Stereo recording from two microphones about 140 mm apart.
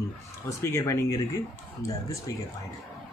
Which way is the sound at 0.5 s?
20° left (ahead or behind).